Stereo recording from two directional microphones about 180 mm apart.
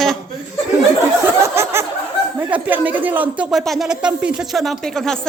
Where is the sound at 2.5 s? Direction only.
10° right (ahead or behind).